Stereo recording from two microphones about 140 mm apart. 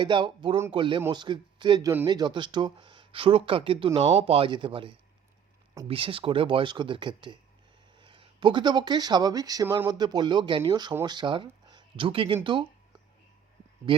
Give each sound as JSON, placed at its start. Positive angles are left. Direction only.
{"t": 0.0, "sound": "speech", "side_deg": -35}